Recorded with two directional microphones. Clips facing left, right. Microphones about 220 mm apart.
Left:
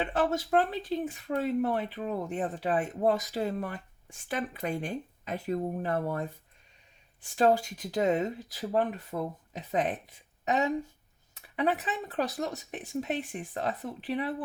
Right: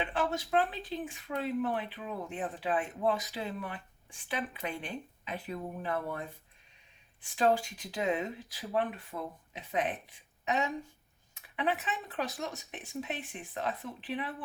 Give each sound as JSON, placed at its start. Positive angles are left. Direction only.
{"t": 0.0, "sound": "speech", "side_deg": 45}
{"t": 7.3, "sound": "speech", "side_deg": 40}